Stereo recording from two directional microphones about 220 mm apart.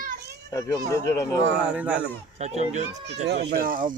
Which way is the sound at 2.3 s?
30° right (ahead or behind).